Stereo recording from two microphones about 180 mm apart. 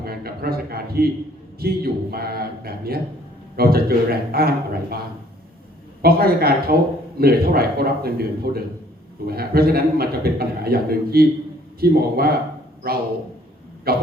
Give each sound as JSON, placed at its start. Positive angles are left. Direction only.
{"t": 0.0, "sound": "a man's voice", "side_deg": -60}
{"t": 6.0, "sound": "a man's voice", "side_deg": -55}